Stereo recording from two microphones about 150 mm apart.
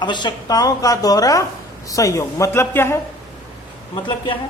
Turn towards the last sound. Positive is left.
turn(degrees=35)  # may be behind; listen again after turning